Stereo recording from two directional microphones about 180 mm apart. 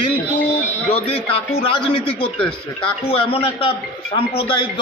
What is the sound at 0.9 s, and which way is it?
A man's voice, 35° left (ahead or behind).